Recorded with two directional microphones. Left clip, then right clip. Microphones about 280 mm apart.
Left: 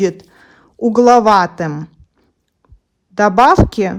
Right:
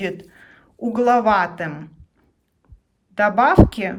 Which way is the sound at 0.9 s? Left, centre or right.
Centre.